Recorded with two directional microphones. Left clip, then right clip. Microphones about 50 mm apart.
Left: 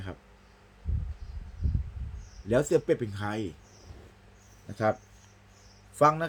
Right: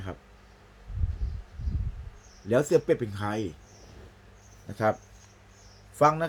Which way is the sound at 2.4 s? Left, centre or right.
Centre.